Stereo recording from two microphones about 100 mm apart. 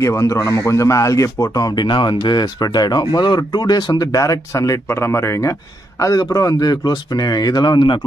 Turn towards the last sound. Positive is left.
turn(degrees=50)  # may be behind; listen again after turning